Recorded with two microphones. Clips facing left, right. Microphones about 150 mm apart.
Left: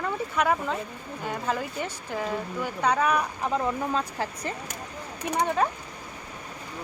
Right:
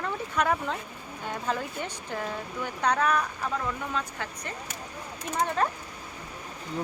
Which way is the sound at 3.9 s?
30° left (ahead or behind).